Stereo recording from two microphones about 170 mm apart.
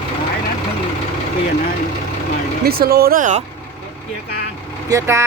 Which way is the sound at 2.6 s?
65° right (ahead or behind).